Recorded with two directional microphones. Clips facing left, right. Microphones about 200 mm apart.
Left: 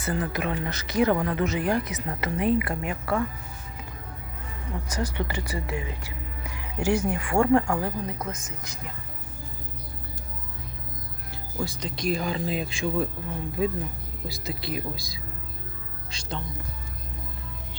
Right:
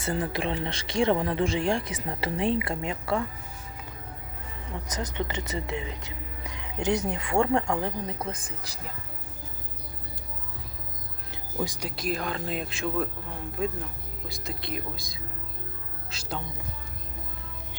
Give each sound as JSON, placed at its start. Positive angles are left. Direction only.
{"t": 0.0, "sound": "speech", "side_deg": -25}
{"t": 4.9, "sound": "speech", "side_deg": -20}
{"t": 11.6, "sound": "speech", "side_deg": -15}
{"t": 14.3, "sound": "speech", "side_deg": 0}